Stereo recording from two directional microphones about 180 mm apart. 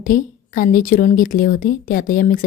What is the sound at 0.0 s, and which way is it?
A woman's voice, 50° left (ahead or behind).